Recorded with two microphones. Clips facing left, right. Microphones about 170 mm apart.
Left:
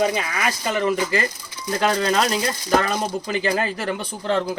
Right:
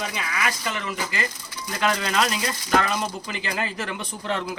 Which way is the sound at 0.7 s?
40° left (ahead or behind).